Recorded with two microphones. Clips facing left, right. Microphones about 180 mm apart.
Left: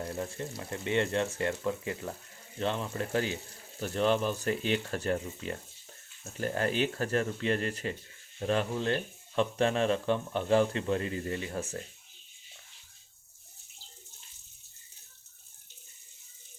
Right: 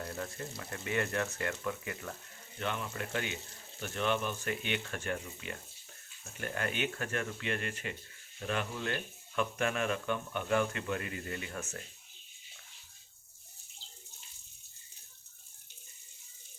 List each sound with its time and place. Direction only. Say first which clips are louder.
0.0 s speech: left 4 dB; 25° left (ahead or behind)